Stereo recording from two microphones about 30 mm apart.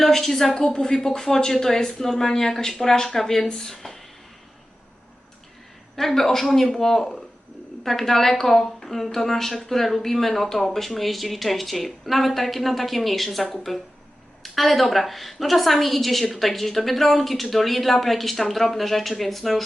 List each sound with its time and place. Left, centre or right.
0.0 s a woman's voice: centre
0.5 s a woman's voice: left
6.0 s a woman's voice: centre